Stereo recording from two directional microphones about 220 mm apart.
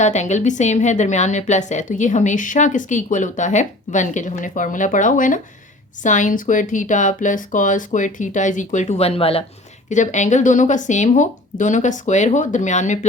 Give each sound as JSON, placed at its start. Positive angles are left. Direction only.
{"t": 0.0, "sound": "a woman's voice", "side_deg": 30}